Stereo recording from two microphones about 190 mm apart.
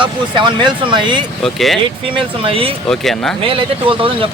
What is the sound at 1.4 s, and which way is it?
Speech, centre (ahead or behind).